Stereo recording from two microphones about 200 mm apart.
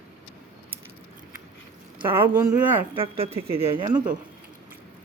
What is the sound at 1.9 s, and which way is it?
Speech, 25° right (ahead or behind).